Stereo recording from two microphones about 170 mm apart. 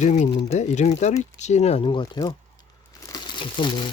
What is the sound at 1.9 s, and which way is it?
Speech, 25° left (ahead or behind).